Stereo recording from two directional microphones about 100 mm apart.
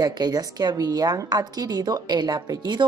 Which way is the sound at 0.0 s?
40° right (ahead or behind).